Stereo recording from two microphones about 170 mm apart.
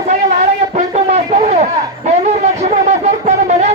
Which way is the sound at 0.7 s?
40° right (ahead or behind).